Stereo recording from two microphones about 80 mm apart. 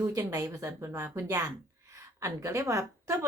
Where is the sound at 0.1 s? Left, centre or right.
Right.